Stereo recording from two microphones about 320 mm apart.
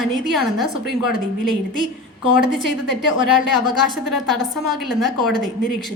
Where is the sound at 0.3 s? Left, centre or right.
Centre.